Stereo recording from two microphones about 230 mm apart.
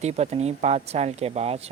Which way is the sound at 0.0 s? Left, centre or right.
Right.